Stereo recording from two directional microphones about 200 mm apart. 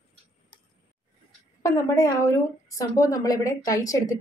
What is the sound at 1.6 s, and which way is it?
A woman's voice, 15° left (ahead or behind).